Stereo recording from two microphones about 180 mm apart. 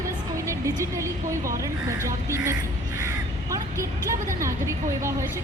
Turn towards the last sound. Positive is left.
turn(degrees=-15)  # may be behind; listen again after turning